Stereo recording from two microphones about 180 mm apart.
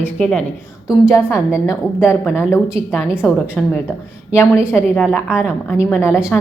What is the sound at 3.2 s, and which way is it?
Speech, 5° right (ahead or behind).